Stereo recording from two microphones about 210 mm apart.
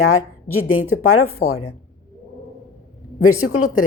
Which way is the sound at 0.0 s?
80° left.